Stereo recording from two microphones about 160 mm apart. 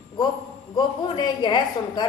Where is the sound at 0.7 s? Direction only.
30° left (ahead or behind).